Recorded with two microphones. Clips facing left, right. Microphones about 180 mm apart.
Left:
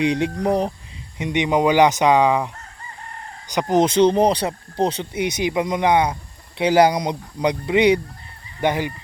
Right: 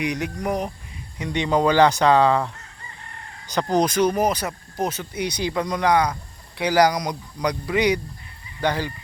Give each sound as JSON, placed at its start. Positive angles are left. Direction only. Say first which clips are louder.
{"t": 0.0, "sound": "speech", "louder": "left 6 dB", "side_deg": 30}
{"t": 1.2, "sound": "speech", "louder": "left 2 dB", "side_deg": 20}
{"t": 3.5, "sound": "speech", "louder": "left 3 dB", "side_deg": 15}